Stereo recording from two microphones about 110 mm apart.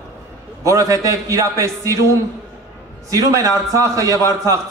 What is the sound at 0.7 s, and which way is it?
A man's voice, 30° right (ahead or behind).